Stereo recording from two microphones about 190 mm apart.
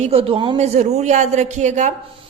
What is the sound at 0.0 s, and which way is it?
A woman's voice, 30° right (ahead or behind).